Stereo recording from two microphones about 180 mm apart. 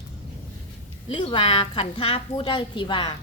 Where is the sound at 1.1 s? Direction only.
30° left (ahead or behind).